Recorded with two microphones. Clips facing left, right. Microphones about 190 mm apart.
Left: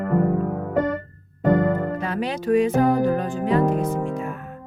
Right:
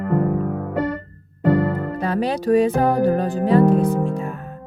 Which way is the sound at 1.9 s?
35° right (ahead or behind).